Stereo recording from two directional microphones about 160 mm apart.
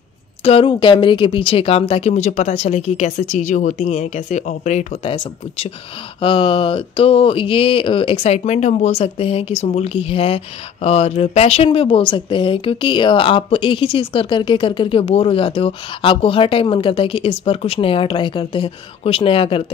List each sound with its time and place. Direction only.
0.4 s speech: 35° left (ahead or behind)
5.1 s speech: 35° left (ahead or behind)